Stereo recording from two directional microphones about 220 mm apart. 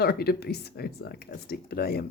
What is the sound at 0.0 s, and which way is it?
A woman's voice, 45° left (ahead or behind).